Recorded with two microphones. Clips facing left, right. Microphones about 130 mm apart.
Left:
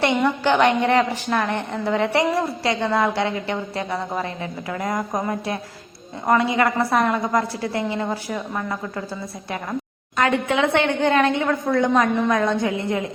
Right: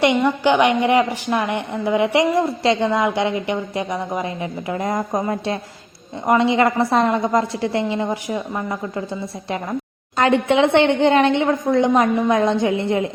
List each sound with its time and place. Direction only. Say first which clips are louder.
0.0 s a woman's voice: right 3 dB; 15° right (ahead or behind)
10.2 s a woman's voice: right 4 dB; 25° right (ahead or behind)